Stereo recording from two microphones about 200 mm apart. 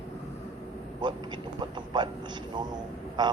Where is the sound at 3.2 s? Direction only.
20° right (ahead or behind).